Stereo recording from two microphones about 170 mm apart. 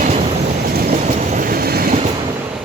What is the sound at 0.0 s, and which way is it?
Train, 35° right (ahead or behind).